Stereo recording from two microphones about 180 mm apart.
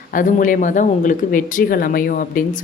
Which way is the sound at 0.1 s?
50° left (ahead or behind).